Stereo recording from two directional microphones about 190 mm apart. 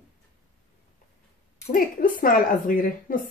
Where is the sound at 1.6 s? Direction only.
45° left (ahead or behind).